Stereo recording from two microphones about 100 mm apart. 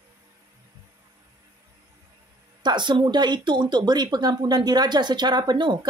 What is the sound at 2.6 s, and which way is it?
Speech, 50° right (ahead or behind).